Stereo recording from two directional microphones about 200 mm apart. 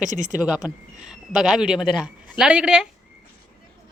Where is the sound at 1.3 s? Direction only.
5° right (ahead or behind).